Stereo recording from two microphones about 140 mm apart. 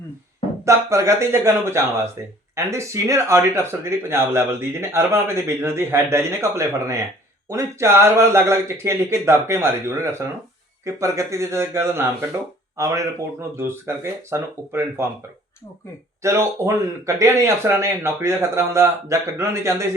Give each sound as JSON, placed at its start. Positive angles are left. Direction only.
{"t": 0.6, "sound": "speech", "side_deg": -20}
{"t": 16.2, "sound": "speech", "side_deg": -20}